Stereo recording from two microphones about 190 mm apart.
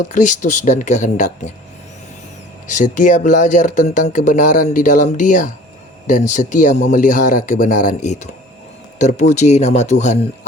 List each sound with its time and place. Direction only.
0.0 s speech: 40° left (ahead or behind)
2.6 s speech: 40° left (ahead or behind)